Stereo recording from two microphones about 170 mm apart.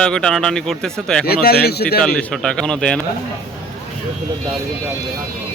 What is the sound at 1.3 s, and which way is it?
Speech, 65° left (ahead or behind).